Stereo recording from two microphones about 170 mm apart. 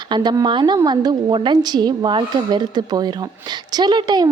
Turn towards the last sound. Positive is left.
turn(degrees=-25)  # may be behind; listen again after turning